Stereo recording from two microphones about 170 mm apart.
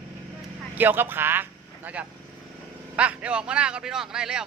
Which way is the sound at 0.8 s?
10° right (ahead or behind).